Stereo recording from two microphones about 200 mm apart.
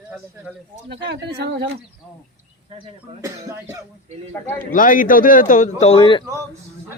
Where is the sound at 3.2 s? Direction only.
15° right (ahead or behind).